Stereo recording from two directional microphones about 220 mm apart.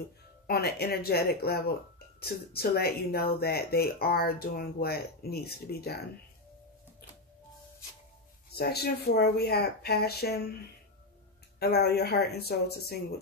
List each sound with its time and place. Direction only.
0.5 s speech: 45° left (ahead or behind)
8.5 s speech: 45° left (ahead or behind)
11.6 s speech: 45° left (ahead or behind)